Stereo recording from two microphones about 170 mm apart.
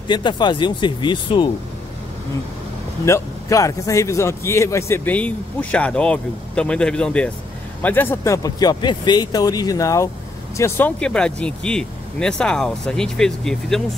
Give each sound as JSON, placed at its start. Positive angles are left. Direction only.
{"t": 0.1, "sound": "speech", "side_deg": 25}
{"t": 3.1, "sound": "speech", "side_deg": 20}
{"t": 10.6, "sound": "speech", "side_deg": 10}